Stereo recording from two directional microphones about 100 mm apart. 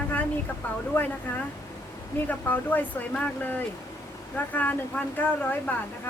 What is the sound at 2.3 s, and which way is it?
Speech, 15° left (ahead or behind).